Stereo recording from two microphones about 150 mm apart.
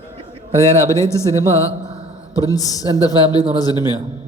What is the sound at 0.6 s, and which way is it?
A man's voice, 20° left (ahead or behind).